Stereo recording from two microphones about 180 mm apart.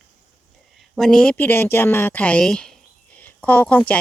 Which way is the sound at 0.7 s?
Centre (ahead or behind).